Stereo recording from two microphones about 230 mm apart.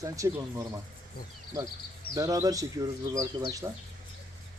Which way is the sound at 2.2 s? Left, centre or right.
Centre.